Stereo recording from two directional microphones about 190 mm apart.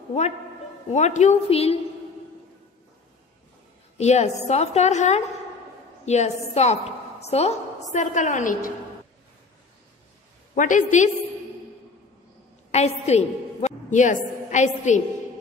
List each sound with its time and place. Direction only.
0.9 s a woman's voice: 35° left (ahead or behind)
4.0 s a woman's voice: 35° left (ahead or behind)
10.5 s a woman's voice: 40° left (ahead or behind)
12.7 s a woman's voice: 35° left (ahead or behind)